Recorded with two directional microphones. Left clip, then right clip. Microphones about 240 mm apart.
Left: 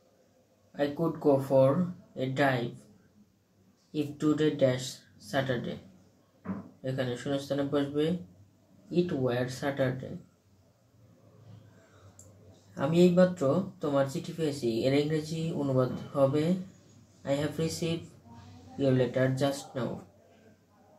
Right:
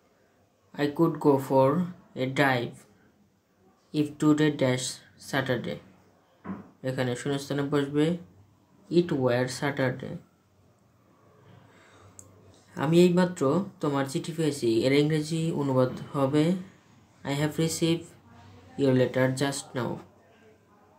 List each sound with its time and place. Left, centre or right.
0.7 s speech: right
3.9 s speech: right
6.8 s speech: right
12.7 s speech: right